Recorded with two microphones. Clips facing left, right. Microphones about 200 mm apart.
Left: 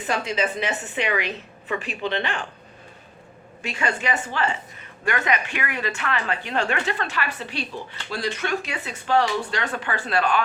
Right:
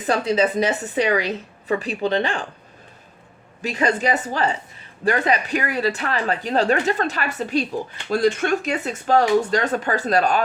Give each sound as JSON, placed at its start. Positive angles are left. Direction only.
{"t": 0.1, "sound": "speech", "side_deg": -35}
{"t": 3.6, "sound": "speech", "side_deg": -40}